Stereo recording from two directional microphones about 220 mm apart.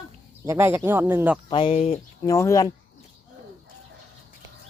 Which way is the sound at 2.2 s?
15° left (ahead or behind).